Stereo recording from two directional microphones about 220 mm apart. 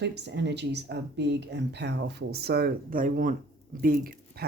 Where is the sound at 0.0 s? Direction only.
50° right (ahead or behind).